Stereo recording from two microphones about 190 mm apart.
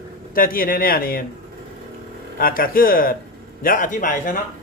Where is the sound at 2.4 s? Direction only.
50° left (ahead or behind).